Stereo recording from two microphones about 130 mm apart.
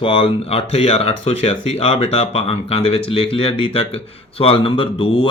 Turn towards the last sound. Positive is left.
turn(degrees=45)  # may be behind; listen again after turning